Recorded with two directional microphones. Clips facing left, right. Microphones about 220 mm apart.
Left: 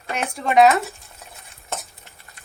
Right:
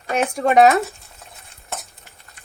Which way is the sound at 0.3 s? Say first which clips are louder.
Right 1 dB; 45° right (ahead or behind).